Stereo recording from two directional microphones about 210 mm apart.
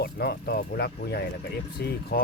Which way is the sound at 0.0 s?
50° left (ahead or behind).